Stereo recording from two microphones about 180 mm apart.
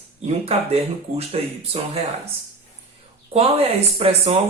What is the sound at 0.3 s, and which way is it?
Speech, 35° right (ahead or behind).